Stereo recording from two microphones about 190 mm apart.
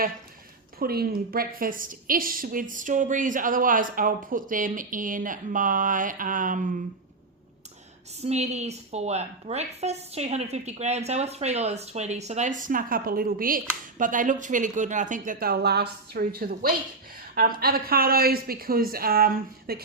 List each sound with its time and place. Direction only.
0.8 s a woman's voice: 55° right (ahead or behind)
8.2 s a woman's voice: 35° right (ahead or behind); by 19.8 s 55° right (ahead or behind)